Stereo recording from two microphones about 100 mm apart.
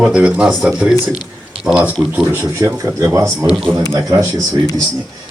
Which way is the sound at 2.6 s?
35° right (ahead or behind).